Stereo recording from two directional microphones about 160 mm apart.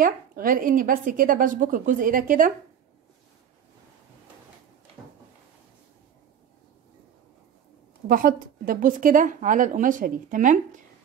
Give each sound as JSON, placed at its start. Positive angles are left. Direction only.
{"t": 0.0, "sound": "a woman's voice", "side_deg": -60}
{"t": 8.1, "sound": "a woman's voice", "side_deg": -60}